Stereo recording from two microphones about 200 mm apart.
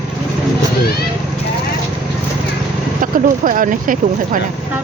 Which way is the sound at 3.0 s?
40° right (ahead or behind).